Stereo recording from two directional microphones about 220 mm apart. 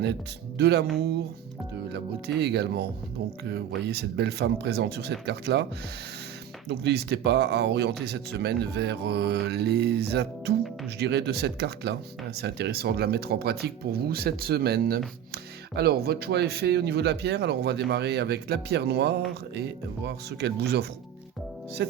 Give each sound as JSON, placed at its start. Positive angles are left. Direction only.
{"t": 0.0, "sound": "speech", "side_deg": -50}
{"t": 6.7, "sound": "speech", "side_deg": -50}